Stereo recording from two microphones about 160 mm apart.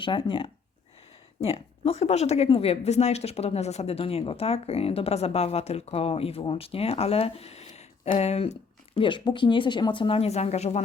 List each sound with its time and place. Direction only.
0.0 s speech: 30° left (ahead or behind)
9.0 s speech: 30° left (ahead or behind)